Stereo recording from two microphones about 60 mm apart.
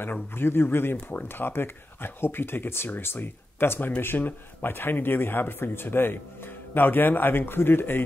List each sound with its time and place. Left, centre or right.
0.0 s speech: left